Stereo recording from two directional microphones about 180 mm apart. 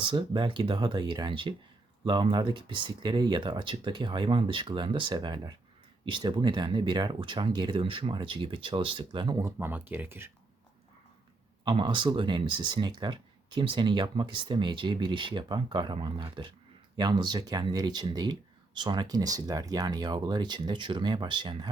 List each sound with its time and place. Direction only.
0.0 s speech: 30° right (ahead or behind)
9.6 s speech: 10° right (ahead or behind)
11.6 s speech: 25° right (ahead or behind)